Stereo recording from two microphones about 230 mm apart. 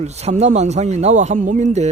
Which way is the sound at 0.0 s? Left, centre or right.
Right.